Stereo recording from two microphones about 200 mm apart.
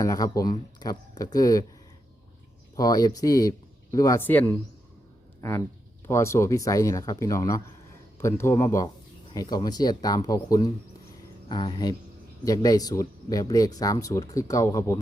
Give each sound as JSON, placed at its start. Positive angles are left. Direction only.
{"t": 0.0, "sound": "speech", "side_deg": 15}
{"t": 2.7, "sound": "speech", "side_deg": 20}